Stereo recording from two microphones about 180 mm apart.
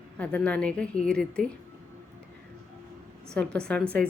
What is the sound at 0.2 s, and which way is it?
Speech, 5° left (ahead or behind).